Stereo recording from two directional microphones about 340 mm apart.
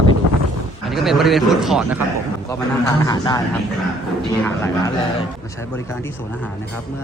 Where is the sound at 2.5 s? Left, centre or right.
Centre.